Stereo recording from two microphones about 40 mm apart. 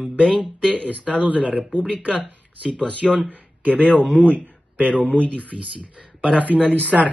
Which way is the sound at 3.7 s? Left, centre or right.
Left.